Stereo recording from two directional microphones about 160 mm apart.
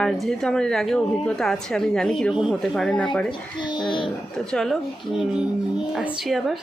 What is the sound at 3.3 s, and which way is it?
Speech, 30° left (ahead or behind).